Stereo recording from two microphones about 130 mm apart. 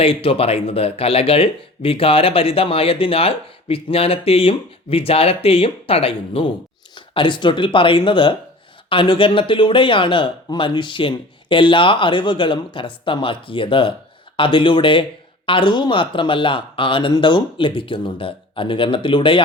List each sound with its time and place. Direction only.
0.0 s speech: 45° left (ahead or behind)